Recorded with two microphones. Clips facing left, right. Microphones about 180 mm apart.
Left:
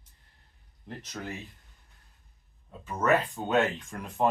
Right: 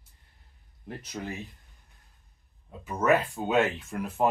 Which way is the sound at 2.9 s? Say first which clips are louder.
Right 1 dB; 10° right (ahead or behind).